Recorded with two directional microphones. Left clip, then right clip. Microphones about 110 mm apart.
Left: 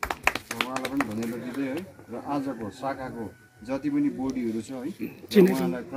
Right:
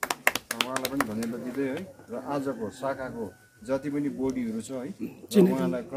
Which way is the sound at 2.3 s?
40° right (ahead or behind).